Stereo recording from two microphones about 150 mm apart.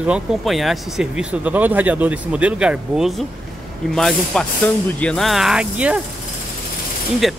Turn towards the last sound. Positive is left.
turn(degrees=0)  # may be behind; listen again after turning